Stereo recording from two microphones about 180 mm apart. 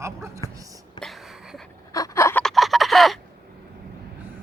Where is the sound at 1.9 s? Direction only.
15° left (ahead or behind).